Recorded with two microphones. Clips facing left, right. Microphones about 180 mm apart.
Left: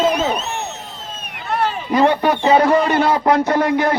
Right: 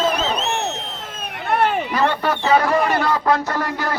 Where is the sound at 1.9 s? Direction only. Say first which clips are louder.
Left 5 dB; 20° left (ahead or behind).